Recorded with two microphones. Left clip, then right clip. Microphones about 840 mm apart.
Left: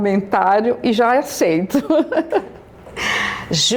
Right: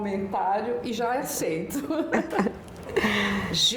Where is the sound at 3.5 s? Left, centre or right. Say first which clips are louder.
Left 6 dB; left.